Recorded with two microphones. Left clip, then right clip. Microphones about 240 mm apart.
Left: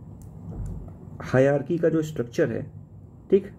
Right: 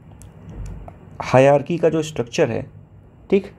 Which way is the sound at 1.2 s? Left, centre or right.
Centre.